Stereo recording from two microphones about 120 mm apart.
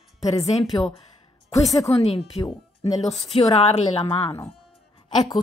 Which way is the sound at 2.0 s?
55° left (ahead or behind).